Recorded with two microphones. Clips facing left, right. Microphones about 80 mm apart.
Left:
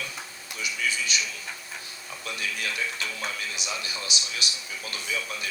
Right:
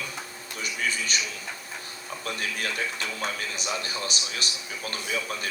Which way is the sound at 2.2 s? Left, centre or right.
Right.